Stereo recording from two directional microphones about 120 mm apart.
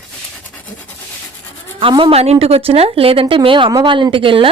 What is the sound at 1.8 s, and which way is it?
Speech, 45° right (ahead or behind).